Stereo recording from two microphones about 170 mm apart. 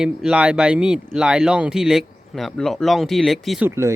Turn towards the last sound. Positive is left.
turn(degrees=-15)  # may be behind; listen again after turning